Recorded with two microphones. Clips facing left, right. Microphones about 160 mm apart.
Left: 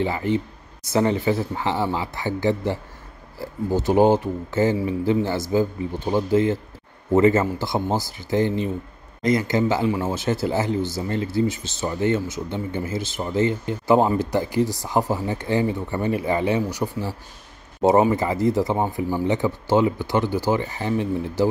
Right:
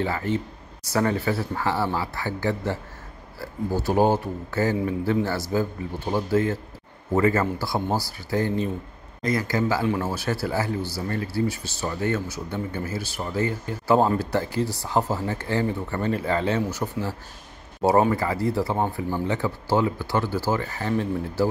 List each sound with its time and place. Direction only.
0.0 s speech: 15° left (ahead or behind)
9.8 s speech: 10° left (ahead or behind)
10.1 s speech: 20° left (ahead or behind)
18.0 s speech: 20° left (ahead or behind)